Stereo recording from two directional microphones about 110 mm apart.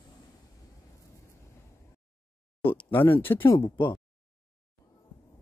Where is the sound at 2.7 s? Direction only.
20° left (ahead or behind).